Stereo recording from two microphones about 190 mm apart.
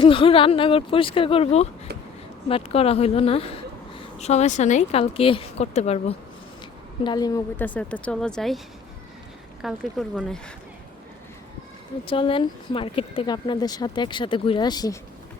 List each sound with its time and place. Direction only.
0.0 s speech: 30° left (ahead or behind)
7.0 s a woman's voice: 20° left (ahead or behind); by 10.4 s centre (ahead or behind)
12.0 s speech: 30° left (ahead or behind)